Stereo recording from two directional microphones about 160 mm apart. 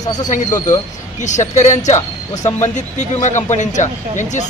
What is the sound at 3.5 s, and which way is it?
Speech, 50° left (ahead or behind).